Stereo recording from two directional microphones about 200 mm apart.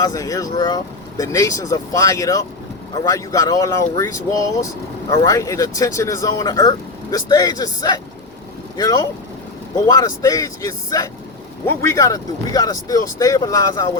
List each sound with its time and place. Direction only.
0.0 s speech: 15° left (ahead or behind)